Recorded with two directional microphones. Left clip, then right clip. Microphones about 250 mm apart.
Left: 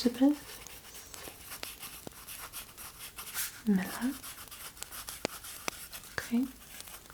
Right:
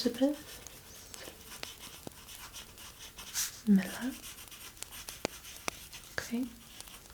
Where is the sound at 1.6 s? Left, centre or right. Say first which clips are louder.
Even; centre.